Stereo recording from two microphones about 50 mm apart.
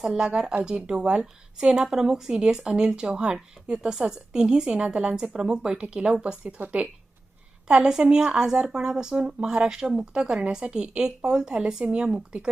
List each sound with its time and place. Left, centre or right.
0.2 s a woman's voice: right
7.7 s a woman's voice: centre